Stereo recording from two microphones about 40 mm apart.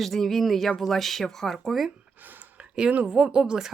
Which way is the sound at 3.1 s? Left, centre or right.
Centre.